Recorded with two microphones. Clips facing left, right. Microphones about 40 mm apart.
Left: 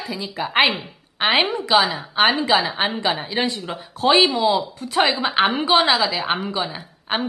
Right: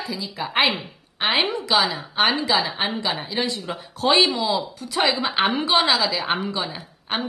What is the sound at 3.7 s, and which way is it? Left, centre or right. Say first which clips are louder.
Speech: left 2 dB; centre.